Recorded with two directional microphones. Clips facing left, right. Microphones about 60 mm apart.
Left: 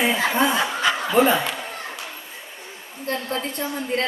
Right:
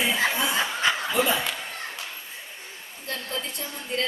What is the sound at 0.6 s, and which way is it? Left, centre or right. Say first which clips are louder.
Snicker: left 3 dB; left.